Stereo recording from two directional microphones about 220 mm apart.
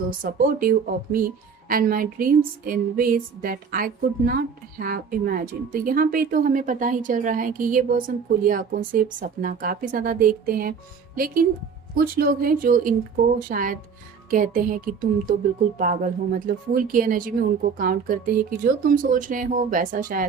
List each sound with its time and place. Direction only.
0.2 s a woman's voice: 40° right (ahead or behind)